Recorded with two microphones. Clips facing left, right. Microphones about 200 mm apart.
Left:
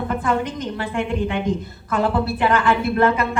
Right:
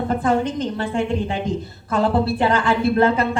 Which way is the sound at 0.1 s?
30° right (ahead or behind).